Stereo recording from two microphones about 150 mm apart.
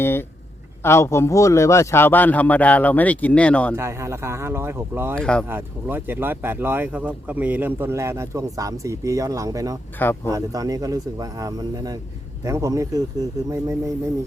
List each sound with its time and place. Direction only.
0.0 s a man's voice: 15° left (ahead or behind)
3.8 s speech: 20° right (ahead or behind)
5.2 s speech: 5° left (ahead or behind)
5.5 s speech: 15° right (ahead or behind)